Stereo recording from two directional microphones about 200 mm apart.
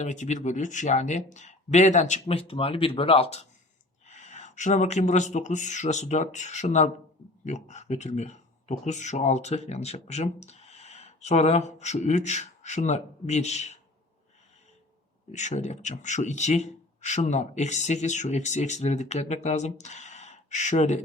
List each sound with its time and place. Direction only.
0.0 s speech: 35° left (ahead or behind)
15.3 s speech: 35° left (ahead or behind)